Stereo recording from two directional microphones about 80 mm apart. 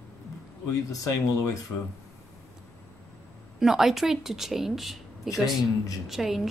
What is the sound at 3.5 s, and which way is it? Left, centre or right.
A woman's voice, centre.